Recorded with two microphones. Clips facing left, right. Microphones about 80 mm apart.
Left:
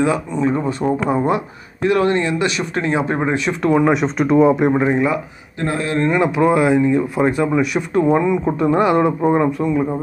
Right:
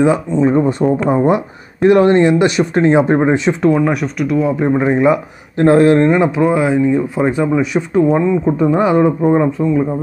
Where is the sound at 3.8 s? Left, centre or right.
Left.